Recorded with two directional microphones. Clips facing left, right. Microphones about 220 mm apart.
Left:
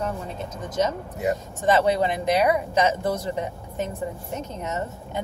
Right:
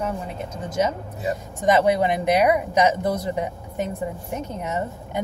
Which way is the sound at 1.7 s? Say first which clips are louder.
Right 2 dB; 15° right (ahead or behind).